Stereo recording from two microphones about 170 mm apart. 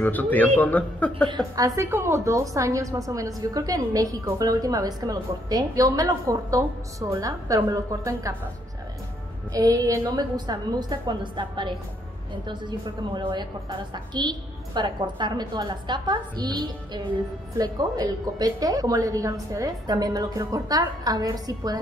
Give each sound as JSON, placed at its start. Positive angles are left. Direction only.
{"t": 0.0, "sound": "a man's voice", "side_deg": 10}
{"t": 1.3, "sound": "a woman's voice", "side_deg": -20}
{"t": 9.5, "sound": "a woman's voice", "side_deg": -20}